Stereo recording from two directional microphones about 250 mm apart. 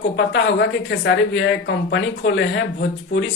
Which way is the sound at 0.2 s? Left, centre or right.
Left.